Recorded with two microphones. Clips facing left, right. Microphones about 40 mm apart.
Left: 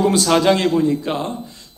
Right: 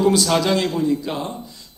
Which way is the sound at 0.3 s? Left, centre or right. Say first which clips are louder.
Left 4 dB; left.